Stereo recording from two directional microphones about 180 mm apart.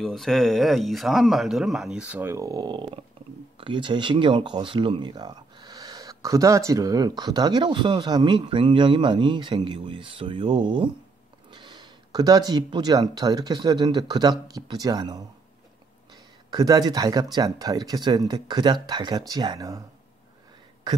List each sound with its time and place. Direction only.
0.0 s speech: centre (ahead or behind); by 15.2 s 20° right (ahead or behind)
16.4 s speech: 20° right (ahead or behind)